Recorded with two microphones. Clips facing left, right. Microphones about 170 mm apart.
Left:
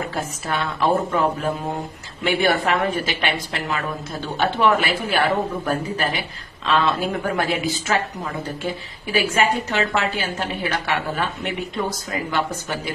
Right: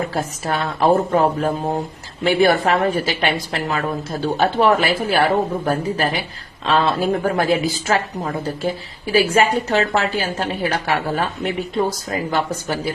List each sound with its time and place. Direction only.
0.1 s a woman's voice: 40° right (ahead or behind)